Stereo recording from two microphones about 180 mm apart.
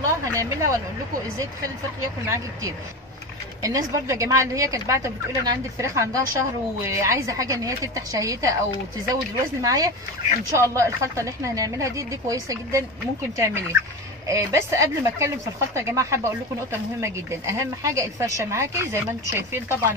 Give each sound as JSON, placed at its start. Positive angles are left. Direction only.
{"t": 0.0, "sound": "speech", "side_deg": -15}
{"t": 2.0, "sound": "a woman's voice", "side_deg": -20}